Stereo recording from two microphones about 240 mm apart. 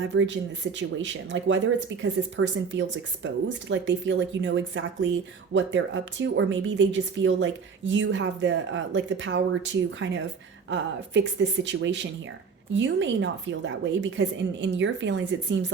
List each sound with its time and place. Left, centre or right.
0.1 s speech: right